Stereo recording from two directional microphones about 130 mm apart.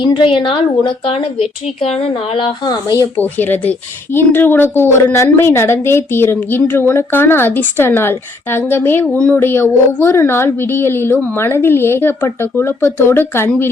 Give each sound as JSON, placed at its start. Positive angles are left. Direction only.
{"t": 0.0, "sound": "a woman's voice", "side_deg": 40}
{"t": 3.2, "sound": "speech", "side_deg": 15}